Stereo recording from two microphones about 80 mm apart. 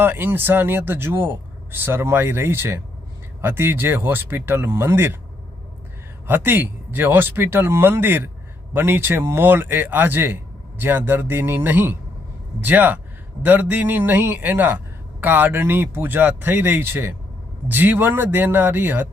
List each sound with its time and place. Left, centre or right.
0.0 s speech: right
6.2 s speech: right